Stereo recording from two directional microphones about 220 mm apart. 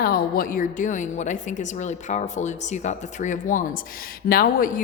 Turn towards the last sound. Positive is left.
turn(degrees=40)  # may be behind; listen again after turning